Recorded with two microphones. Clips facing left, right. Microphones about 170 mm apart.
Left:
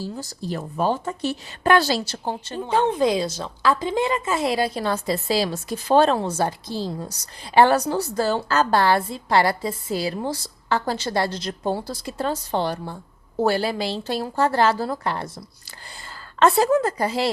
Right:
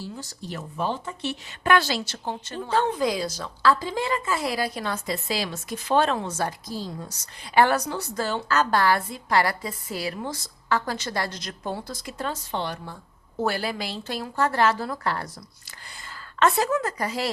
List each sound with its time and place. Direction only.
0.0 s a woman's voice: 35° left (ahead or behind)
2.6 s speech: 20° left (ahead or behind)
16.4 s a woman's voice: 35° left (ahead or behind)